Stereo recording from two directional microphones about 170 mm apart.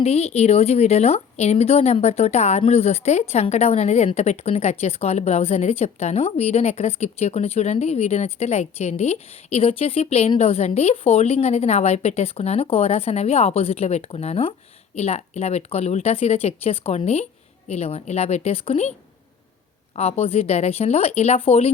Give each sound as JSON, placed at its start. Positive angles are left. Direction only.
{"t": 0.0, "sound": "a woman's voice", "side_deg": 35}
{"t": 20.0, "sound": "a woman's voice", "side_deg": 35}